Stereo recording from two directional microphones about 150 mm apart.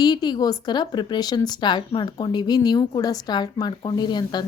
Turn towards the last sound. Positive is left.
turn(degrees=30)  # may be behind; listen again after turning